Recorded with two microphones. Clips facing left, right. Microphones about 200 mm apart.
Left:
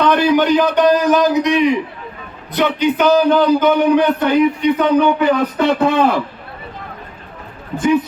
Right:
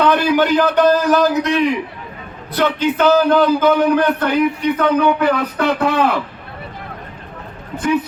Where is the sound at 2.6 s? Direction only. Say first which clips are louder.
Even; 15° left (ahead or behind).